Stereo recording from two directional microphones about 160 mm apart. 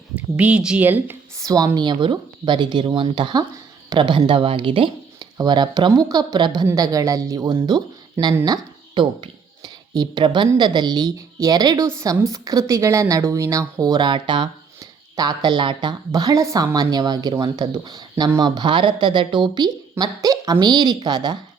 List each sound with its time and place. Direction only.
0.2 s a woman's voice: 10° right (ahead or behind)
1.5 s speech: 25° right (ahead or behind)